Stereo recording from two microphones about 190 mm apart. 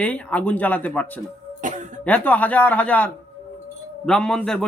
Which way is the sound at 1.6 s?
40° right (ahead or behind).